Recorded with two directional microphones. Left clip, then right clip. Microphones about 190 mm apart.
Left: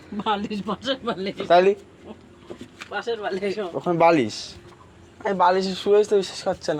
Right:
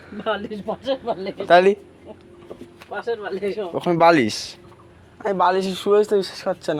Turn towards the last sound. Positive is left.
turn(degrees=-45)  # may be behind; listen again after turning